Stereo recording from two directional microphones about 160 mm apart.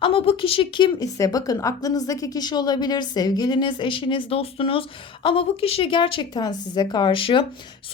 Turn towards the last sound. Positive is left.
turn(degrees=35)  # may be behind; listen again after turning